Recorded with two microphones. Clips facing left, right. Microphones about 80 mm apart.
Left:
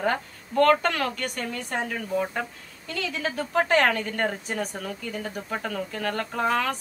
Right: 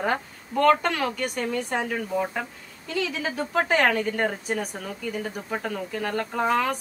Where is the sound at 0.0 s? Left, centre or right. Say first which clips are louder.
Even; centre.